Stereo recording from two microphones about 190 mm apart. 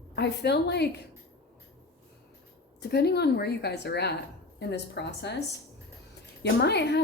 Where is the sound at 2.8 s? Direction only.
60° left (ahead or behind).